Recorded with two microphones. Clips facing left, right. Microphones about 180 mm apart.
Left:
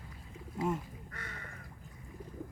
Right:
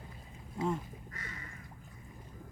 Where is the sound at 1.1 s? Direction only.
60° left (ahead or behind).